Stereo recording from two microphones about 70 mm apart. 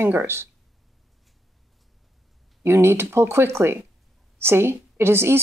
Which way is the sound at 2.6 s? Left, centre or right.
Right.